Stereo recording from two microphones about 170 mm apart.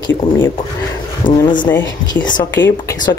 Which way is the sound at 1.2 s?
25° left (ahead or behind).